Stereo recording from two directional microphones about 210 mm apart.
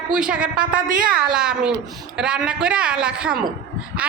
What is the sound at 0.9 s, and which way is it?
Speech, 40° right (ahead or behind).